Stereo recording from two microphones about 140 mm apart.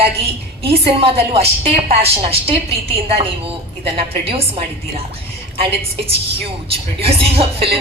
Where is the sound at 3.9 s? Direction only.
45° right (ahead or behind).